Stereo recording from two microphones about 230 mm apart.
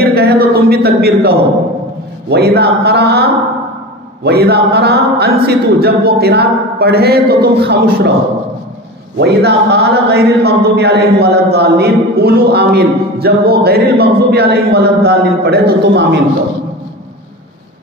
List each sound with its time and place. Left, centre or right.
0.0 s a man's voice: right
9.2 s a man's voice: right